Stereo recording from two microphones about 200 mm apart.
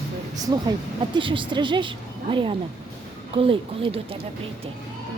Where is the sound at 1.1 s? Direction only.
25° right (ahead or behind).